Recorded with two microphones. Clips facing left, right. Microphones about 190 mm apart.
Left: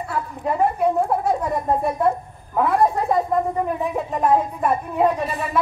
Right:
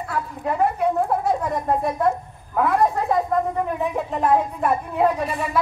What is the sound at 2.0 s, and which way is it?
A woman's voice, centre (ahead or behind).